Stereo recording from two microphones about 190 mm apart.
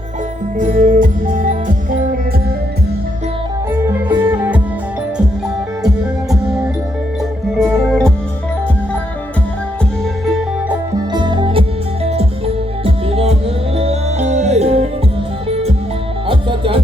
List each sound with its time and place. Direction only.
0.6 s music: 45° right (ahead or behind)
3.7 s music: 10° right (ahead or behind)
7.8 s music: 5° left (ahead or behind)
10.2 s music: centre (ahead or behind)
11.1 s music: 25° right (ahead or behind)
12.8 s music: 30° right (ahead or behind)